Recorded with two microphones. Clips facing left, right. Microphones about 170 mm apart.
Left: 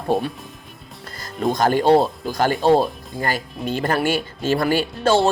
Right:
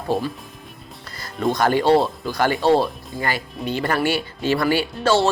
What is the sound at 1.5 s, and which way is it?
Speech, 45° left (ahead or behind).